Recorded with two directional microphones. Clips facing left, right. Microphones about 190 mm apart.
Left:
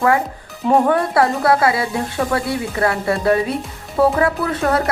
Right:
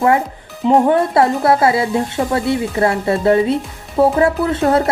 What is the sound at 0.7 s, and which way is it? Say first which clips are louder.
Speech: right 2 dB; 20° right (ahead or behind).